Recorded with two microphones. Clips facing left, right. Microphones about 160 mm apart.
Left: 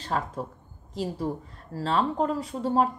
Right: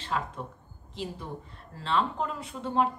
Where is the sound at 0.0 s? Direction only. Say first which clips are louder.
Left 3 dB; 40° left (ahead or behind).